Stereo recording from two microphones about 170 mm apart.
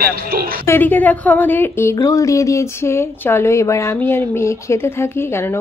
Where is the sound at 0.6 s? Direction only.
10° left (ahead or behind).